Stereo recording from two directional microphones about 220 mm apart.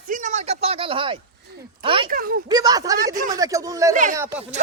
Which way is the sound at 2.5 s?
15° right (ahead or behind).